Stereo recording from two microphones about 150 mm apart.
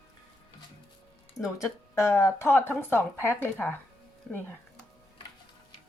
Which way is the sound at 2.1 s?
20° left (ahead or behind).